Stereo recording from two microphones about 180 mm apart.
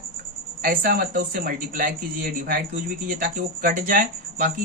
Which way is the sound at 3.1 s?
50° right (ahead or behind).